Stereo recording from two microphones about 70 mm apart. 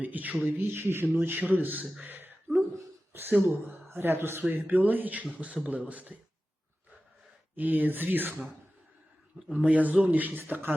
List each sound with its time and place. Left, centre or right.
0.0 s a man's voice: right
2.0 s a sound: right
3.1 s a man's voice: right
7.5 s a man's voice: right
9.5 s a man's voice: right